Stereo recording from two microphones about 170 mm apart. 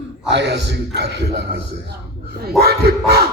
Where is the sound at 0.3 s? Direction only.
90° right.